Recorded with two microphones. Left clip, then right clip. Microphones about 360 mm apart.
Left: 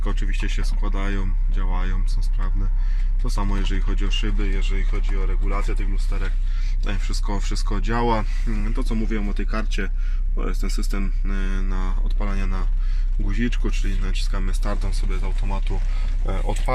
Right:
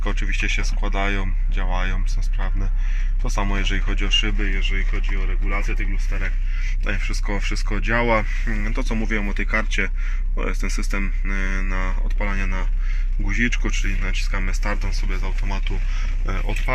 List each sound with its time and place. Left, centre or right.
0.0 s speech: centre
3.2 s speech: centre
6.8 s speech: centre